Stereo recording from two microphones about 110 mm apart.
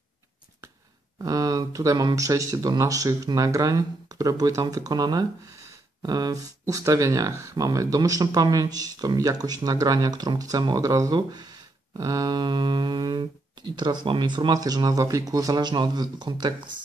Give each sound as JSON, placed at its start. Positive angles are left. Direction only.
{"t": 1.1, "sound": "speech", "side_deg": -35}